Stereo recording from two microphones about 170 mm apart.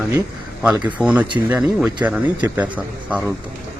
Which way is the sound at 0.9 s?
10° right (ahead or behind).